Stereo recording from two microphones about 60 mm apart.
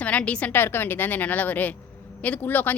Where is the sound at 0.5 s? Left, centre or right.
Left.